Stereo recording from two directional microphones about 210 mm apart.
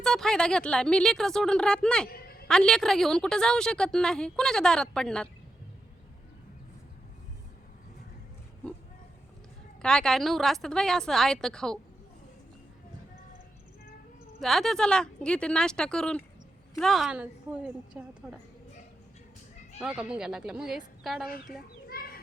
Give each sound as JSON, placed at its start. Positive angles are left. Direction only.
{"t": 0.0, "sound": "a woman's voice", "side_deg": 0}
{"t": 2.1, "sound": "a sound", "side_deg": 45}
{"t": 2.5, "sound": "a woman's voice", "side_deg": 5}
{"t": 9.8, "sound": "a woman's voice", "side_deg": 5}
{"t": 14.4, "sound": "a woman's voice", "side_deg": 0}
{"t": 19.8, "sound": "a woman's voice", "side_deg": -5}
{"t": 21.8, "sound": "children playing", "side_deg": 45}